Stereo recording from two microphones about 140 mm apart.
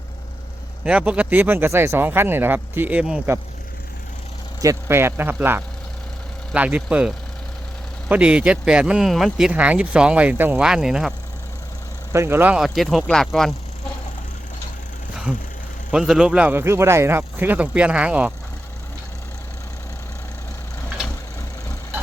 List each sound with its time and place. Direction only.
0.9 s speech: 10° right (ahead or behind)
4.6 s speech: 20° right (ahead or behind)
8.1 s speech: 10° right (ahead or behind)
12.1 s speech: 20° right (ahead or behind); by 13.5 s 5° left (ahead or behind)
15.1 s a sound: 5° right (ahead or behind)
15.9 s speech: 5° right (ahead or behind)